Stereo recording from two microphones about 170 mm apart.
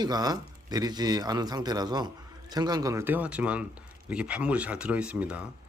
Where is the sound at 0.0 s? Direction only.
25° right (ahead or behind).